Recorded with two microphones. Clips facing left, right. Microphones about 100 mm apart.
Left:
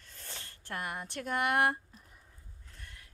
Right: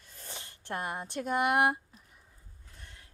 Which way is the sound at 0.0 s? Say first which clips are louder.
Right 2 dB; 15° right (ahead or behind).